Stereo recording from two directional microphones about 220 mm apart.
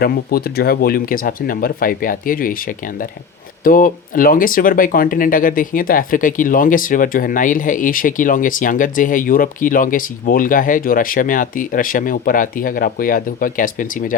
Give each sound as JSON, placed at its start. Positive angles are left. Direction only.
{"t": 0.0, "sound": "speech", "side_deg": 40}